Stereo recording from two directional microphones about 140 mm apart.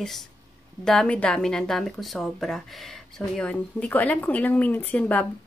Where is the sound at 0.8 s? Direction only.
5° left (ahead or behind).